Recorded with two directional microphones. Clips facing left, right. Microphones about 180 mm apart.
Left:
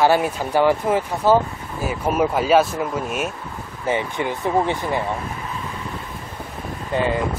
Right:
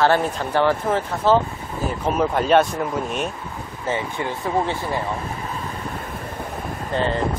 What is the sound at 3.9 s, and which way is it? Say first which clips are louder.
Speech: left 3 dB; 20° left (ahead or behind).